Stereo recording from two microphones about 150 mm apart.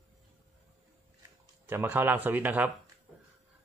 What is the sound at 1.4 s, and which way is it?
Speech, 15° right (ahead or behind).